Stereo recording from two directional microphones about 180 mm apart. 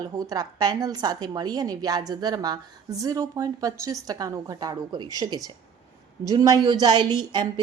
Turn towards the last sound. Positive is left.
turn(degrees=-25)  # may be behind; listen again after turning